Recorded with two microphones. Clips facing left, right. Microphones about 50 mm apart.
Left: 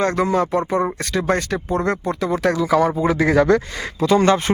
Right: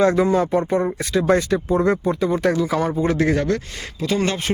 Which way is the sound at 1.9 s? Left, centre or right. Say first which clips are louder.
Right 2 dB; left.